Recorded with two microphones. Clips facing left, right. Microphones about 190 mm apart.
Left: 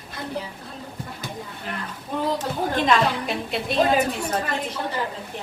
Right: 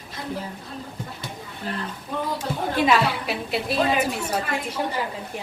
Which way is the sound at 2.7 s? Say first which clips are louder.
Right 1 dB; 5° right (ahead or behind).